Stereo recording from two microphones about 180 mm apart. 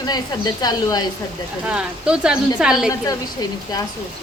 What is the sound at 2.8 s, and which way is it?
Speech, 20° left (ahead or behind).